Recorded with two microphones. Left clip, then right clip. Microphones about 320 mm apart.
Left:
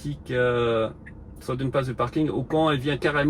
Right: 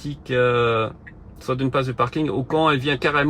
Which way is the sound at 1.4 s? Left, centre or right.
Right.